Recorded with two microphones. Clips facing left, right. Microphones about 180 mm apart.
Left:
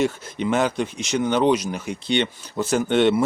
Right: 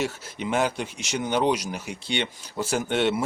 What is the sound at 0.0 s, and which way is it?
Speech, 10° right (ahead or behind).